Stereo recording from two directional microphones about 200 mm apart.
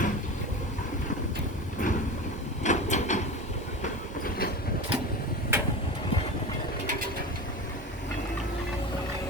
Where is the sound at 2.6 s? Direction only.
35° left (ahead or behind).